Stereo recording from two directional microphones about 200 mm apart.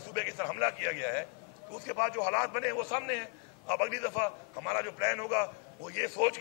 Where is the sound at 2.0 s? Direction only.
15° left (ahead or behind).